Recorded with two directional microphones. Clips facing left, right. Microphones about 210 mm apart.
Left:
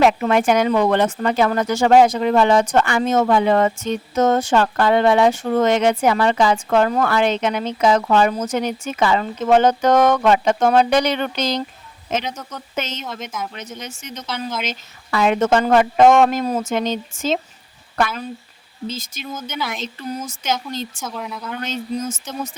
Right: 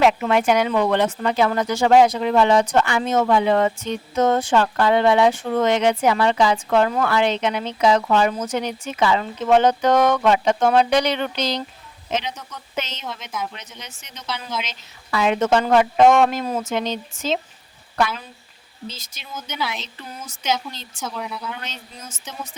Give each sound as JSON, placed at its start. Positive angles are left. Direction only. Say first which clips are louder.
{"t": 0.0, "sound": "speech", "louder": "left 2 dB", "side_deg": 45}
{"t": 18.9, "sound": "speech", "louder": "left 8 dB", "side_deg": 50}
{"t": 21.0, "sound": "speech", "louder": "even", "side_deg": 0}
{"t": 21.6, "sound": "speech", "louder": "left 13 dB", "side_deg": 45}